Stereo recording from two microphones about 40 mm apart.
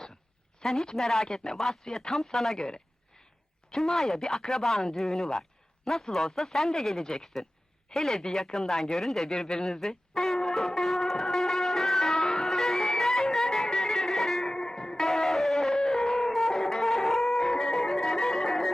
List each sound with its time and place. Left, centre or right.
0.6 s a woman's voice: centre
3.8 s speech: centre
9.0 s speech: centre
9.6 s speech: centre
9.8 s music: centre